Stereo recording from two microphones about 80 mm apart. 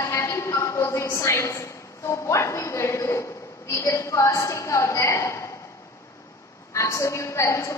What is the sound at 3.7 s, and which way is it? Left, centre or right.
A woman's voice, left.